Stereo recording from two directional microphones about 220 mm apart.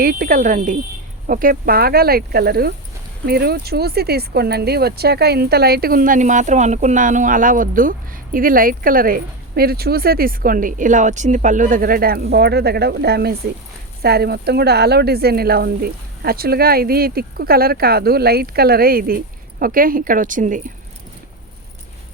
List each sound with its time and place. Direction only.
0.0 s speech: 40° right (ahead or behind)